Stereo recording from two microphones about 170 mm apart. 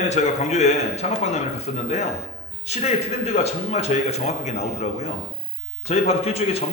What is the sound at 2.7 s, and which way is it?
A man's voice, 40° left (ahead or behind).